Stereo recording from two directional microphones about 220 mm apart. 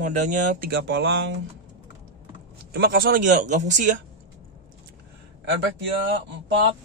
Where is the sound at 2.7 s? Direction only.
45° right (ahead or behind).